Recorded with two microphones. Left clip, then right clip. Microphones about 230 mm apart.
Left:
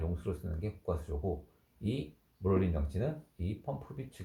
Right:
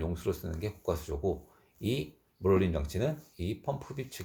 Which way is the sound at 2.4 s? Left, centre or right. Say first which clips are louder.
Right 5 dB; right.